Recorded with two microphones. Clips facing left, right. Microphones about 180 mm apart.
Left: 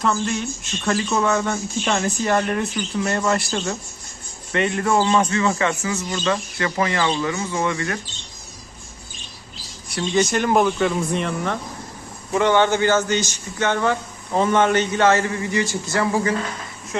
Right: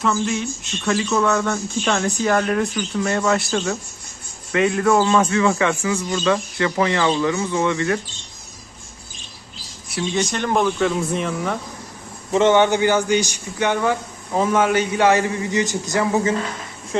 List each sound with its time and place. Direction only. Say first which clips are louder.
0.0 s speech: right 1 dB; centre (ahead or behind)
9.9 s speech: left 3 dB; centre (ahead or behind)
12.3 s a man's voice: right 2 dB; 20° right (ahead or behind)